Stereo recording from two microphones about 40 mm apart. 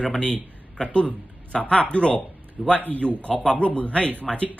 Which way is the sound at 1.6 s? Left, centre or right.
Left.